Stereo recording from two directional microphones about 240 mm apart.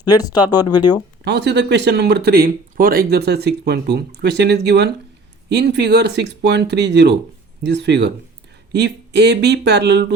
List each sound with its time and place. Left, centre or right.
0.0 s speech: centre
1.2 s speech: right